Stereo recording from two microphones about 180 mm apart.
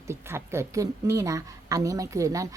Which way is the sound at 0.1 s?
15° right (ahead or behind).